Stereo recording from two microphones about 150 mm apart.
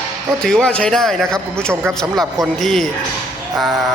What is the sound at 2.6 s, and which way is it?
Speech, centre (ahead or behind).